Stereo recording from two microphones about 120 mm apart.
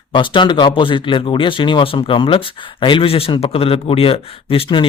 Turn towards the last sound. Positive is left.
turn(degrees=50)  # may be behind; listen again after turning